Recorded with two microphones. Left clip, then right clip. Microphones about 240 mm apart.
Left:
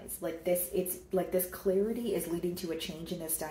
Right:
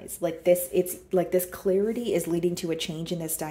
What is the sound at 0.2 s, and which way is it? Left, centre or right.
Speech, right.